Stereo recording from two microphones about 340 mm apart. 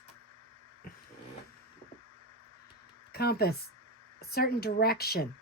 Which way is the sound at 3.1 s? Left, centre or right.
Left.